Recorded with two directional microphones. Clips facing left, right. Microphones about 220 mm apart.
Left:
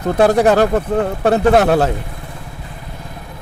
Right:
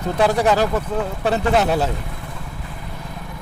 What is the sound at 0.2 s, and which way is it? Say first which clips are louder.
Speech: left 5 dB; 50° left (ahead or behind).